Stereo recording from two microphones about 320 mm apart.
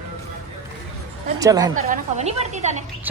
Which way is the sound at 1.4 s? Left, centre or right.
Centre.